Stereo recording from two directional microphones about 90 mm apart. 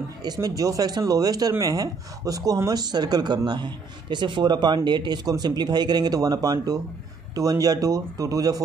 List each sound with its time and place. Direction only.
0.2 s speech: 45° right (ahead or behind)